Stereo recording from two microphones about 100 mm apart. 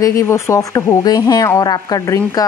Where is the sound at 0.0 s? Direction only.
30° left (ahead or behind).